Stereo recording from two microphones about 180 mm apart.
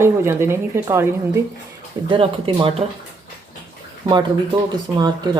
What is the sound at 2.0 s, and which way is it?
Speech, 30° right (ahead or behind).